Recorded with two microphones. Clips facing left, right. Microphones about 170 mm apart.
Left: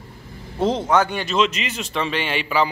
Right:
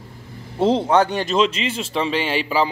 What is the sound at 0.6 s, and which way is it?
A man's voice, 30° right (ahead or behind).